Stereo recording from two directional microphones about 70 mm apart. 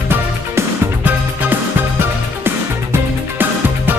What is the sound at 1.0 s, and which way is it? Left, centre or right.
Music, right.